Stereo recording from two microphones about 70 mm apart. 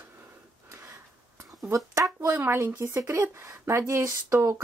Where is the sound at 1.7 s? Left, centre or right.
Right.